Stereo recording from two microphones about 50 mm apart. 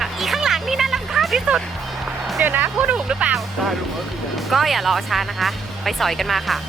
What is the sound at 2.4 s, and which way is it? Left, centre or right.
Speech, right.